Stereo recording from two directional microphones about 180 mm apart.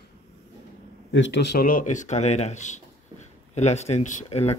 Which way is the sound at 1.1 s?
80° left.